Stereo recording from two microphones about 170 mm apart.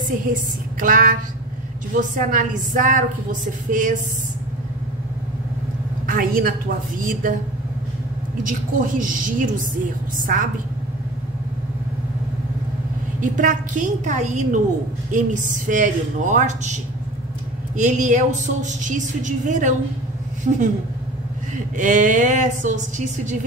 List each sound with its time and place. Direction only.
0.3 s a woman's voice: 55° right (ahead or behind)
6.0 s a woman's voice: 55° right (ahead or behind)
8.5 s a woman's voice: 50° right (ahead or behind)
13.2 s a woman's voice: 50° right (ahead or behind)
21.7 s a woman's voice: 45° right (ahead or behind)